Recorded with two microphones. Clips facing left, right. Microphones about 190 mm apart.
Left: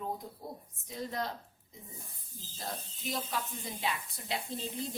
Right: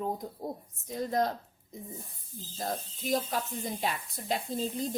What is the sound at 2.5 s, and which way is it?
A woman's voice, 45° right (ahead or behind).